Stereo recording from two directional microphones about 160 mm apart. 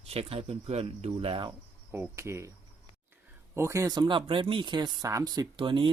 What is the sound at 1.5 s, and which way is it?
Cricket, 15° right (ahead or behind).